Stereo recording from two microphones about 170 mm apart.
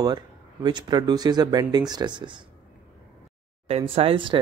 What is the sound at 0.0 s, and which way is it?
Speech, 25° right (ahead or behind).